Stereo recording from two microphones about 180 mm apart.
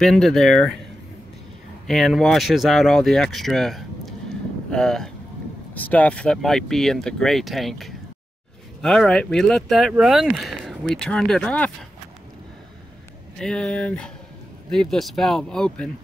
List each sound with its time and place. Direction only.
0.0 s speech: centre (ahead or behind)
1.9 s speech: centre (ahead or behind)
13.4 s speech: 5° left (ahead or behind)